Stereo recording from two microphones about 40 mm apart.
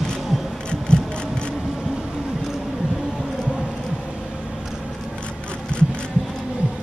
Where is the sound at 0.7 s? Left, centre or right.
Left.